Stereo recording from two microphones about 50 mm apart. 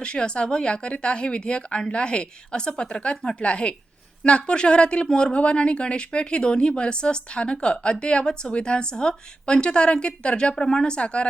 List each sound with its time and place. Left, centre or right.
0.0 s speech: centre